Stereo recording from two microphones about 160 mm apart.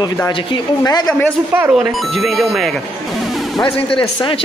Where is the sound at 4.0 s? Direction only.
30° left (ahead or behind).